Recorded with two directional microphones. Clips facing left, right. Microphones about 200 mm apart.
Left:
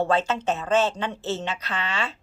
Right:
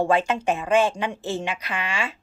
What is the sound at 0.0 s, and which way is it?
A woman's voice, 15° right (ahead or behind).